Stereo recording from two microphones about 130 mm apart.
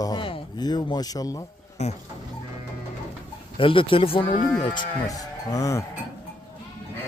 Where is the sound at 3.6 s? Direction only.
45° left (ahead or behind); by 5.8 s 25° left (ahead or behind).